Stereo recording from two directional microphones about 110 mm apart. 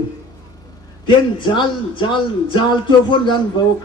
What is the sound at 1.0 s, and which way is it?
Speech, 45° left (ahead or behind).